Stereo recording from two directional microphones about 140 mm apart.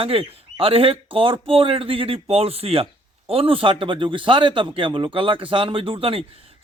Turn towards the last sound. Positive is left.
turn(degrees=-40)  # may be behind; listen again after turning